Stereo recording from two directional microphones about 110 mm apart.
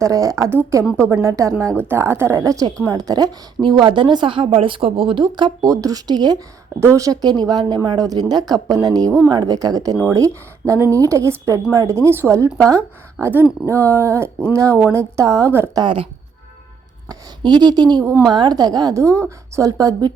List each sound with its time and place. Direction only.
0.0 s a woman's voice: 30° right (ahead or behind)
6.7 s a woman's voice: 25° right (ahead or behind)
15.8 s speech: 50° right (ahead or behind)
17.1 s speech: 45° right (ahead or behind)